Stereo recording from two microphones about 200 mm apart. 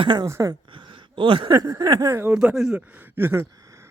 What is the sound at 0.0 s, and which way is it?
Speech, 20° right (ahead or behind).